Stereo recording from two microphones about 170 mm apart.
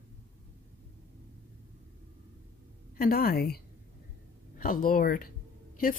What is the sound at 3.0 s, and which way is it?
Speech, 60° left (ahead or behind).